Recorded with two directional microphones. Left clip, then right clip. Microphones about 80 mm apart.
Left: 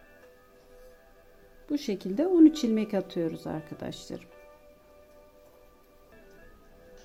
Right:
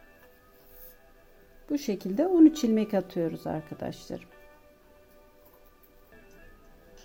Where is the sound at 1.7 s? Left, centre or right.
Right.